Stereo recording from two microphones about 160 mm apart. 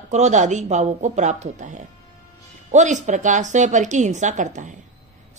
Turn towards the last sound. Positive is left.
turn(degrees=-50)  # may be behind; listen again after turning